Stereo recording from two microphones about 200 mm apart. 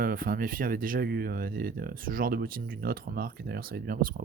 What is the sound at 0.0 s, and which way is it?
Speech, 45° right (ahead or behind).